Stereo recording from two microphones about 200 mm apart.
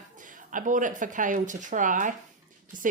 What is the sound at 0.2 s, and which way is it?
Speech, 40° right (ahead or behind).